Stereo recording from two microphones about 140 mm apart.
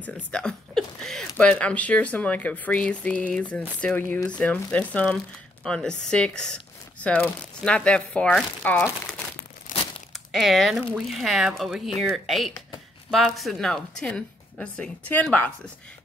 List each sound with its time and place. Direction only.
0.0 s speech: 5° left (ahead or behind)
9.7 s crumpling: 75° left (ahead or behind)
10.1 s a woman's voice: centre (ahead or behind)